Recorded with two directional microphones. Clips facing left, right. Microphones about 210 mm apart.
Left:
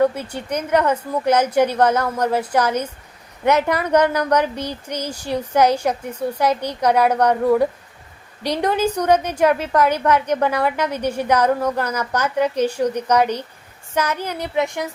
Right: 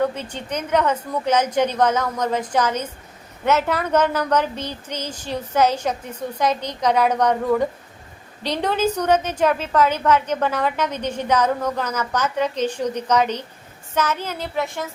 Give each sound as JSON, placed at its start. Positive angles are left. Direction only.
{"t": 0.0, "sound": "a woman's voice", "side_deg": 10}